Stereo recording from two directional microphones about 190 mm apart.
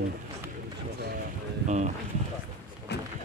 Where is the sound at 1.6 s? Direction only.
40° right (ahead or behind).